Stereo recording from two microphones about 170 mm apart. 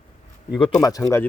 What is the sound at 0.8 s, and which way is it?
Speech, 20° left (ahead or behind).